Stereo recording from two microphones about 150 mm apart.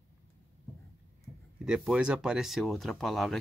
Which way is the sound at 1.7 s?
5° right (ahead or behind).